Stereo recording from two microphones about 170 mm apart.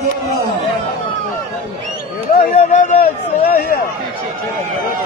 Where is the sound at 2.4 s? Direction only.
45° left (ahead or behind).